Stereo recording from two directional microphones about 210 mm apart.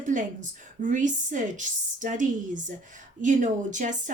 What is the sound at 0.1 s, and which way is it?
A woman's voice, 35° right (ahead or behind).